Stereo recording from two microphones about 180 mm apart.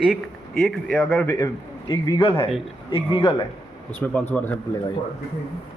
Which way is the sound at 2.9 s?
30° left (ahead or behind).